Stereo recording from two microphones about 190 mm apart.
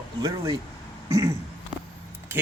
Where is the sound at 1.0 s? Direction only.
15° right (ahead or behind).